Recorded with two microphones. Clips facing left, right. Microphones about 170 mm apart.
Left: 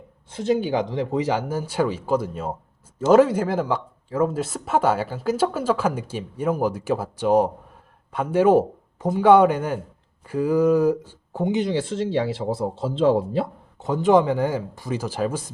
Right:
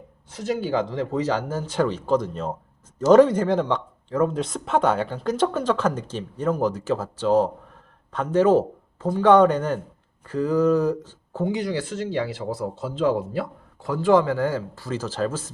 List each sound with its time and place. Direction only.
0.3 s speech: 25° left (ahead or behind)